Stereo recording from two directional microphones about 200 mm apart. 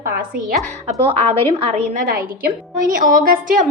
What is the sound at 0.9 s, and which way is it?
Speech, 30° right (ahead or behind).